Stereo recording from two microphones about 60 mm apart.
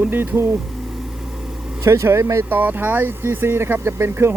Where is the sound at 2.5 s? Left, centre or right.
Right.